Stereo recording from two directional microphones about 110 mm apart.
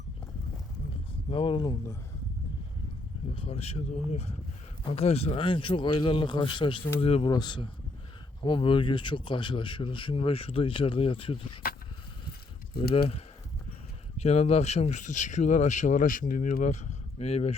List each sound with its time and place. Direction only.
1.3 s a man's voice: 55° left (ahead or behind)
3.3 s speech: 60° left (ahead or behind)
4.9 s a man's voice: 65° left (ahead or behind)
7.0 s speech: 60° left (ahead or behind)
7.3 s a man's voice: 40° left (ahead or behind)
12.9 s speech: 60° left (ahead or behind)